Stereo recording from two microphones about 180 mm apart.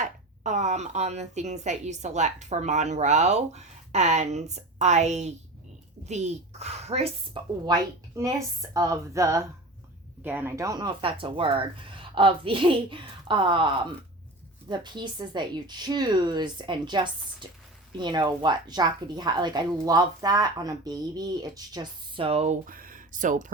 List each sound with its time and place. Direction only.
0.0 s speech: 40° right (ahead or behind)
22.6 s speech: 50° right (ahead or behind)